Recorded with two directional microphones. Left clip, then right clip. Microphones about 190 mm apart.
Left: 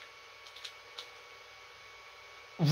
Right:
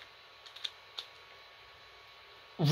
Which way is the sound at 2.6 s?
50° right (ahead or behind).